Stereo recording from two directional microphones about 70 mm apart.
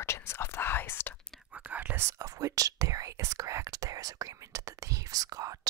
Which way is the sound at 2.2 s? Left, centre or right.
Right.